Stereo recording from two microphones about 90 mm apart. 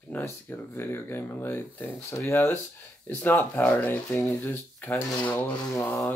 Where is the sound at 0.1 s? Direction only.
25° left (ahead or behind).